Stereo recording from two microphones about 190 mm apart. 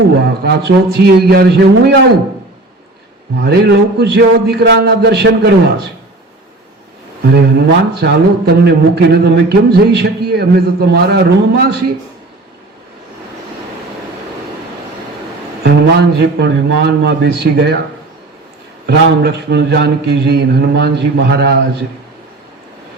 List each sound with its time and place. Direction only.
0.1 s speech: 60° right (ahead or behind)
3.4 s speech: 60° right (ahead or behind)
7.3 s speech: 60° right (ahead or behind)
15.6 s speech: 60° right (ahead or behind)
18.9 s speech: 60° right (ahead or behind)